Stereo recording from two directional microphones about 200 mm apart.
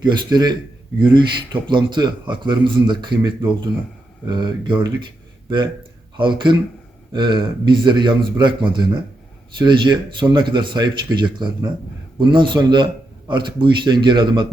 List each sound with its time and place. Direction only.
0.0 s speech: 20° right (ahead or behind)